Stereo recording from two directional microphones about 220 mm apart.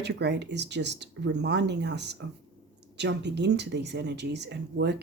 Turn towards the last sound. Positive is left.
turn(degrees=-50)  # may be behind; listen again after turning